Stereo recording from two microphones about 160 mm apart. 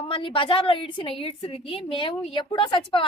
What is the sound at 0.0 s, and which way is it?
A woman's voice, 35° left (ahead or behind).